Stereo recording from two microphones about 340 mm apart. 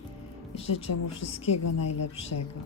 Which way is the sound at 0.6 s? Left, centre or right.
Left.